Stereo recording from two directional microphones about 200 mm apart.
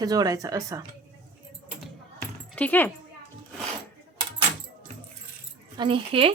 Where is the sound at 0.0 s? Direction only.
20° right (ahead or behind).